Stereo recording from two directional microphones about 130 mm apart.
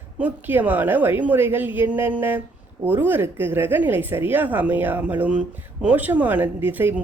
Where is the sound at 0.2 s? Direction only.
15° right (ahead or behind).